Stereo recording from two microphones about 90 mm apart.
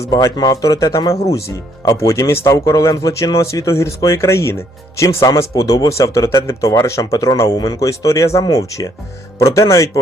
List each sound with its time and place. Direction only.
0.3 s speech: 45° left (ahead or behind)